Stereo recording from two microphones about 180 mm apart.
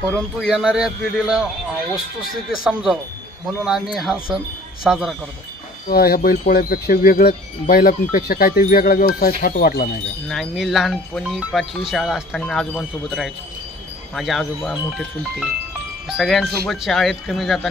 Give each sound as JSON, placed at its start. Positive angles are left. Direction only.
{"t": 0.4, "sound": "speech", "side_deg": -5}
{"t": 2.5, "sound": "speech", "side_deg": -5}
{"t": 5.9, "sound": "speech", "side_deg": 55}
{"t": 10.2, "sound": "speech", "side_deg": 5}